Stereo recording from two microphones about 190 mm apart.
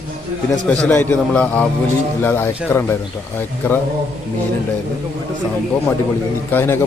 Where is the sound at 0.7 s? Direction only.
5° left (ahead or behind).